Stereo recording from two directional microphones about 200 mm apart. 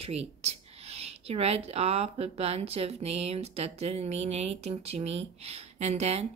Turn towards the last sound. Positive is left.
turn(degrees=-35)  # may be behind; listen again after turning